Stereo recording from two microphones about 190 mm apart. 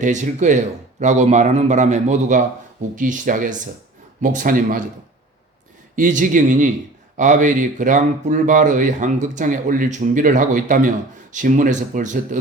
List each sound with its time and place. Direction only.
0.0 s a man's voice: 40° right (ahead or behind)
6.0 s a man's voice: 45° right (ahead or behind)